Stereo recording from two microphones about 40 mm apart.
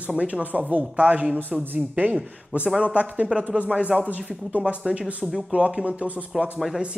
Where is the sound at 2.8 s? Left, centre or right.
Right.